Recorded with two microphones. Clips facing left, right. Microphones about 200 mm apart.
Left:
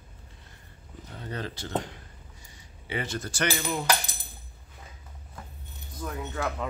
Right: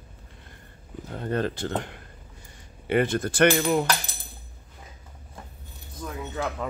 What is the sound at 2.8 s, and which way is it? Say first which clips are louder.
Speech: right 10 dB; 55° right (ahead or behind).